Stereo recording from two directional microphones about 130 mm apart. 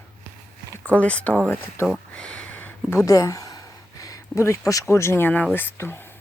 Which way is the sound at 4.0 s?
25° left (ahead or behind).